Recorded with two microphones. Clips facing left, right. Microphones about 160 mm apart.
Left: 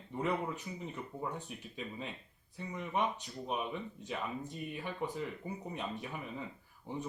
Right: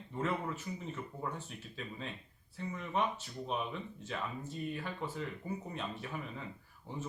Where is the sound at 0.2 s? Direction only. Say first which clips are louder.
Left 1 dB; 15° left (ahead or behind).